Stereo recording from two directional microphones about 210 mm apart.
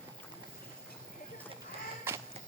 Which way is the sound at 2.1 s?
10° right (ahead or behind).